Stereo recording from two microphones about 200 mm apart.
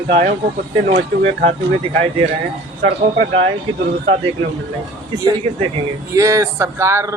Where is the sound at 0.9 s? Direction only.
60° right (ahead or behind).